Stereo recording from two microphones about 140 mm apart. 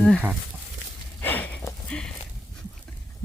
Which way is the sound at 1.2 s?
10° left (ahead or behind).